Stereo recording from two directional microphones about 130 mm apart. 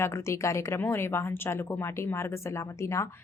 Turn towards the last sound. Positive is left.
turn(degrees=20)  # may be behind; listen again after turning